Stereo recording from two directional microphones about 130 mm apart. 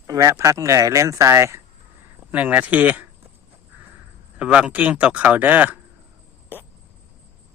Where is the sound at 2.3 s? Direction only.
10° right (ahead or behind).